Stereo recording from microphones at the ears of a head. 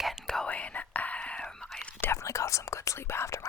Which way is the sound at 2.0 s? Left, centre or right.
Left.